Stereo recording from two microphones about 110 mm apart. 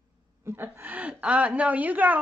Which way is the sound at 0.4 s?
20° right (ahead or behind).